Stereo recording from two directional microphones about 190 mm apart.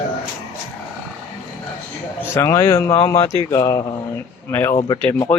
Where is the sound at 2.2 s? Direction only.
15° left (ahead or behind).